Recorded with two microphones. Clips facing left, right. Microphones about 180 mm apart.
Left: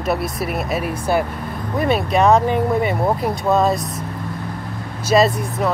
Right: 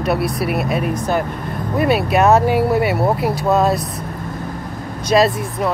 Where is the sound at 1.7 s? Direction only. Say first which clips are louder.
Right 2 dB; 5° right (ahead or behind).